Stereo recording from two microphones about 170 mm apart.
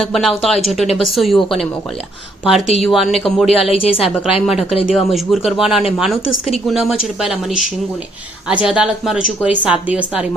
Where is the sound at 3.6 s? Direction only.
35° left (ahead or behind).